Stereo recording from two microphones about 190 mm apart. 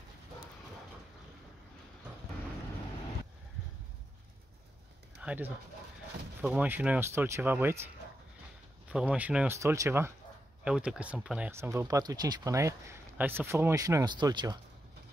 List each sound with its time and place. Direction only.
5.2 s speech: 10° right (ahead or behind)